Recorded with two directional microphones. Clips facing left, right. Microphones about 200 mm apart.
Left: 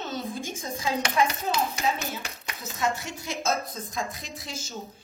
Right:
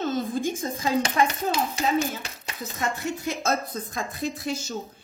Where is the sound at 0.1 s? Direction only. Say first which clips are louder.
Right 7 dB; 50° right (ahead or behind).